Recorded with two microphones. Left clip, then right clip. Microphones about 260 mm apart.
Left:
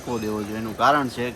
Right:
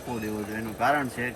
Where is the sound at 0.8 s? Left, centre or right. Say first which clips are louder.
Left 6 dB; centre.